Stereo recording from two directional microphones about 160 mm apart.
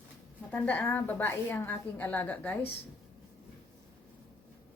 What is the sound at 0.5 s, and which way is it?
Speech, 10° left (ahead or behind).